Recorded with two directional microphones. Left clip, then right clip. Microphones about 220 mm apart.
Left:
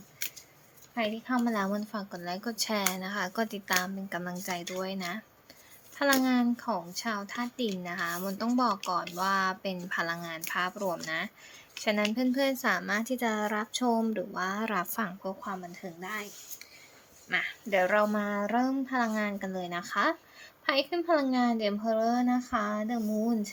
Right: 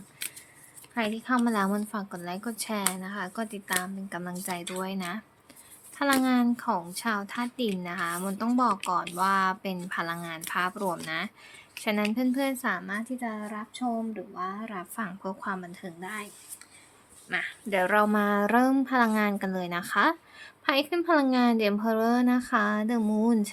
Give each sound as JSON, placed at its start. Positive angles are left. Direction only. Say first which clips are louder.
{"t": 0.9, "sound": "a woman's voice", "louder": "right 3 dB", "side_deg": -20}
{"t": 15.2, "sound": "a woman's voice", "louder": "right 3 dB", "side_deg": -15}
{"t": 17.3, "sound": "speech", "louder": "even", "side_deg": -5}
{"t": 17.7, "sound": "a woman's voice", "louder": "right 2 dB", "side_deg": -20}